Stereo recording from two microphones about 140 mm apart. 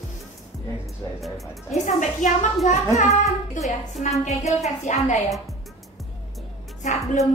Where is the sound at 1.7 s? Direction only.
60° left (ahead or behind).